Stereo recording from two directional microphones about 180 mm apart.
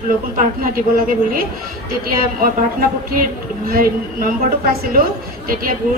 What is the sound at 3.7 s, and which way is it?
Speech, 55° right (ahead or behind).